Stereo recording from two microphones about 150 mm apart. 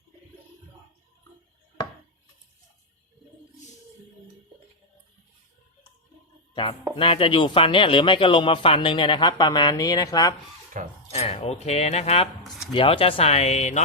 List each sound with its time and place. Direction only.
6.5 s chopping: 35° left (ahead or behind)
6.9 s speech: 35° left (ahead or behind)
10.8 s speech: 60° right (ahead or behind)
11.1 s speech: 40° left (ahead or behind)